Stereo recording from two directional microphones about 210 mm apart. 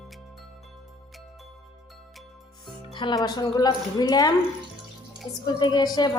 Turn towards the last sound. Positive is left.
turn(degrees=20)  # may be behind; listen again after turning